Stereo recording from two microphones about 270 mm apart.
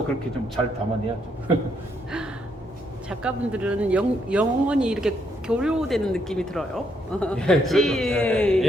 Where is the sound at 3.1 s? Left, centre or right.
Centre.